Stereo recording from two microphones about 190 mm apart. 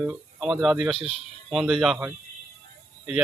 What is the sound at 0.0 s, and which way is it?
A man's voice, 5° right (ahead or behind).